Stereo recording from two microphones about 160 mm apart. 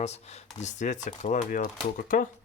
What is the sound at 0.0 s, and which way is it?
Speech, 45° left (ahead or behind).